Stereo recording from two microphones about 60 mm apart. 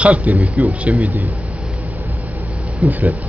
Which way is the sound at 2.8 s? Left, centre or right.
Right.